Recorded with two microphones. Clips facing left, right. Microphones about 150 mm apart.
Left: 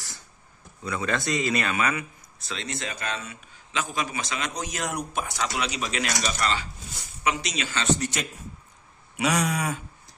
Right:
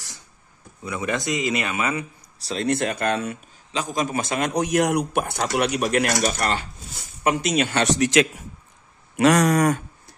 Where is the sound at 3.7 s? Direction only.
40° right (ahead or behind); by 9.8 s 85° right.